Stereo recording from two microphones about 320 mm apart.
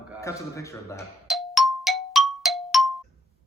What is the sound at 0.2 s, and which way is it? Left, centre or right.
Clang, centre.